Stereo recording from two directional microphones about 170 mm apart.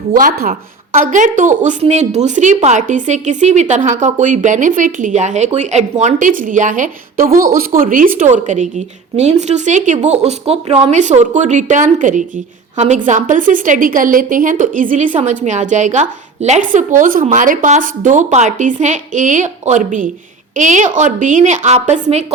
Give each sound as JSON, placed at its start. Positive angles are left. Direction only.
{"t": 0.1, "sound": "a woman's voice", "side_deg": -55}